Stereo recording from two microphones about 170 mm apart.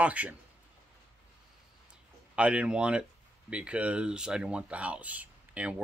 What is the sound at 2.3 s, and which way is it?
Speech, 5° right (ahead or behind).